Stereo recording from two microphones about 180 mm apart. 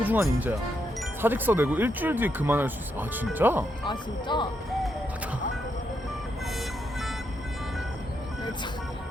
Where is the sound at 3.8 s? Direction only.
25° left (ahead or behind).